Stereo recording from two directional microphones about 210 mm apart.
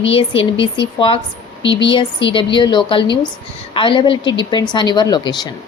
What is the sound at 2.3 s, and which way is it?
Speech, 25° left (ahead or behind).